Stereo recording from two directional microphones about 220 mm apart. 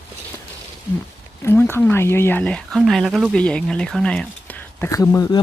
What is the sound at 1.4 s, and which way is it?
Speech, 10° left (ahead or behind).